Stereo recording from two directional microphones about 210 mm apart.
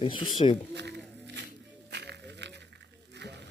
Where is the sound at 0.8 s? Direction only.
55° right (ahead or behind).